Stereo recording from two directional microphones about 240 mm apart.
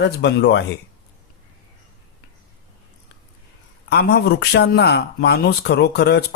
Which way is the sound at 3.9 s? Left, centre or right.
Left.